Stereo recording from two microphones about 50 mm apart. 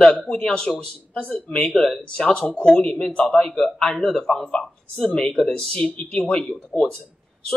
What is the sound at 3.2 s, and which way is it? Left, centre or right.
A man's voice, centre.